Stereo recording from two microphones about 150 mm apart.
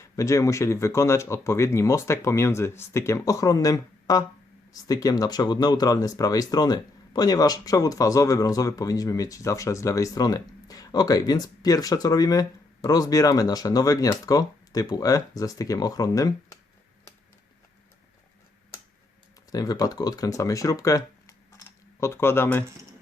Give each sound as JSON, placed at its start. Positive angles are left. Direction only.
{"t": 0.0, "sound": "speech", "side_deg": 20}
{"t": 19.5, "sound": "speech", "side_deg": 25}